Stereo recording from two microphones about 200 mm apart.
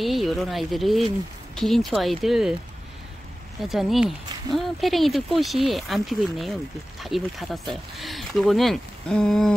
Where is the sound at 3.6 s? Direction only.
Centre (ahead or behind).